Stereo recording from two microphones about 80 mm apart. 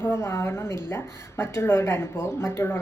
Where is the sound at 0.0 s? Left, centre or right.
Left.